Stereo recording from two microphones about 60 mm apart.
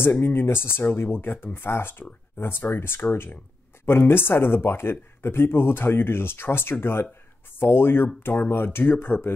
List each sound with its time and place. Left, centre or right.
0.0 s speech: left